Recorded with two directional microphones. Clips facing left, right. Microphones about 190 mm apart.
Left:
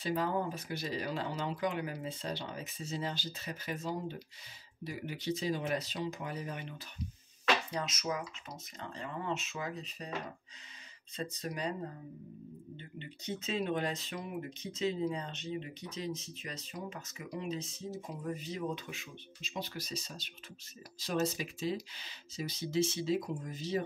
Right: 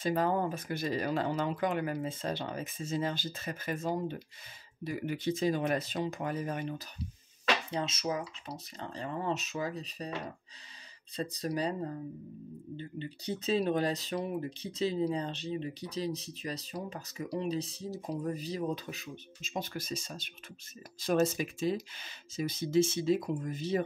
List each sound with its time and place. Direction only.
0.0 s speech: 50° right (ahead or behind)
7.7 s speech: 30° right (ahead or behind)
11.1 s speech: 35° right (ahead or behind)
12.7 s speech: 35° right (ahead or behind); by 23.8 s 55° right (ahead or behind)